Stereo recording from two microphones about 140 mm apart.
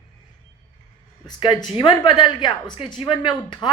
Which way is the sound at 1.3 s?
35° left (ahead or behind).